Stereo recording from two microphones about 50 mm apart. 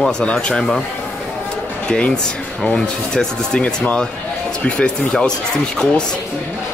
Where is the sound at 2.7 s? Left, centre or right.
Centre.